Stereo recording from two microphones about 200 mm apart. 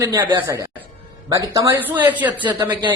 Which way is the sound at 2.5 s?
20° right (ahead or behind).